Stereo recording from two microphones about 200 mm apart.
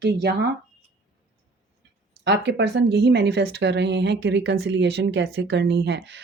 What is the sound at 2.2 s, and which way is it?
Speech, 60° right (ahead or behind).